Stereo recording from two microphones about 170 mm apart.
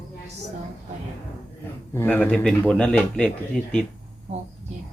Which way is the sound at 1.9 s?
10° left (ahead or behind).